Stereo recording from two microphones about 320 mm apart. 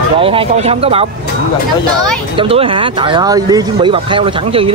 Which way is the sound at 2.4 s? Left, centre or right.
Centre.